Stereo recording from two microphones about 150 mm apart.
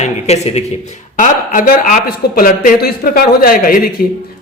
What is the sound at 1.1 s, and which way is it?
Speech, 60° left (ahead or behind).